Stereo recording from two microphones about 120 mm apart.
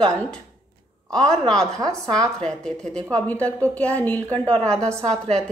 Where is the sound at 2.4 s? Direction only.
5° left (ahead or behind).